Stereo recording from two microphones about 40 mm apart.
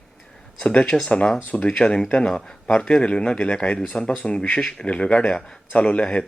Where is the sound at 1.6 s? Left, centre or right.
Left.